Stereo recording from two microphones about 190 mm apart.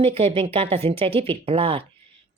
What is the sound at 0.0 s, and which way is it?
Speech, 30° right (ahead or behind).